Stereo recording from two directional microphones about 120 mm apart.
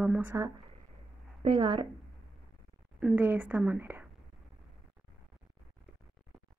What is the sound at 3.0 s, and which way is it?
Speech, 15° right (ahead or behind).